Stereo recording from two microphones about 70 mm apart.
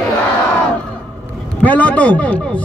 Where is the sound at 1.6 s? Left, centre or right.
Left.